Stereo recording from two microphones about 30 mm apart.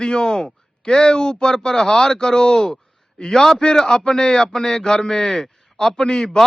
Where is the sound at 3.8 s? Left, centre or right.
Left.